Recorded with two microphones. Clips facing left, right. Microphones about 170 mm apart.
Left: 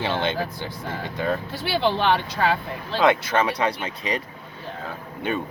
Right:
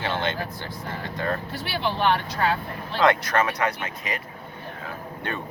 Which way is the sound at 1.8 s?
90° left.